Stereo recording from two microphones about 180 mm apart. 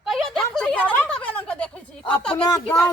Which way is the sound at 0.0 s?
Centre (ahead or behind).